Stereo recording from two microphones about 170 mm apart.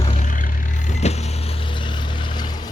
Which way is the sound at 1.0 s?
40° left (ahead or behind).